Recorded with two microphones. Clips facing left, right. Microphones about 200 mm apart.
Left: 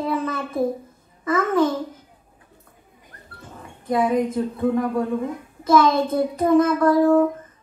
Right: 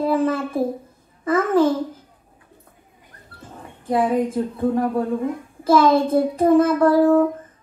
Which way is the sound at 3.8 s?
30° right (ahead or behind).